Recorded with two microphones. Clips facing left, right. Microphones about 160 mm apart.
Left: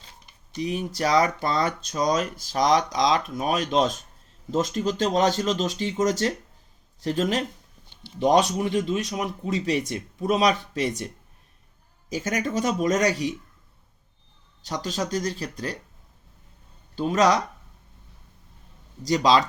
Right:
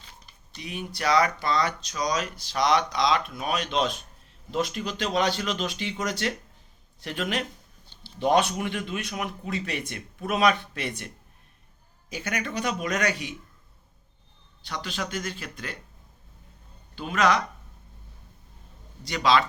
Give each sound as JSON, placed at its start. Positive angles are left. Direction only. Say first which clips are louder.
{"t": 0.5, "sound": "speech", "louder": "left 8 dB", "side_deg": 40}
{"t": 12.1, "sound": "speech", "louder": "left 5 dB", "side_deg": 40}
{"t": 14.7, "sound": "speech", "louder": "left 5 dB", "side_deg": 40}
{"t": 16.9, "sound": "speech", "louder": "left 3 dB", "side_deg": 40}
{"t": 19.0, "sound": "speech", "louder": "left 3 dB", "side_deg": 40}